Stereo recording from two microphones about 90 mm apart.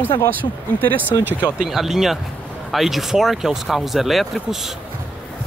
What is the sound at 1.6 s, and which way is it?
Speech, 5° right (ahead or behind).